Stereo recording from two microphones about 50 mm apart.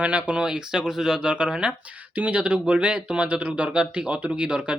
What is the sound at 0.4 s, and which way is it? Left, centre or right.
Speech, centre.